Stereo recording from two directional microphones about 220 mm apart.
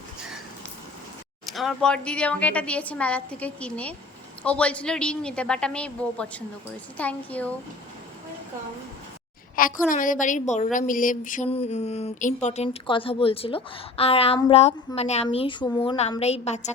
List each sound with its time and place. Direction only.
1.5 s speech: centre (ahead or behind)
9.6 s a woman's voice: 40° left (ahead or behind)